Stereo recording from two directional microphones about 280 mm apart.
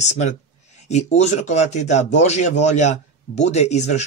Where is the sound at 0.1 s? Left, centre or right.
Left.